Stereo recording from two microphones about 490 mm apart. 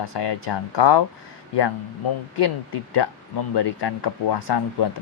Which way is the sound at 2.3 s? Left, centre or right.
Left.